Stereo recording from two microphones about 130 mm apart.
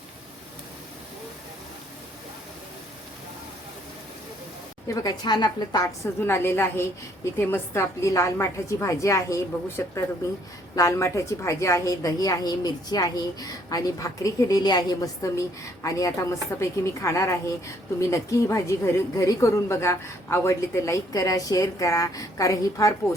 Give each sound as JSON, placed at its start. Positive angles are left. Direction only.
{"t": 5.0, "sound": "a woman's voice", "side_deg": 35}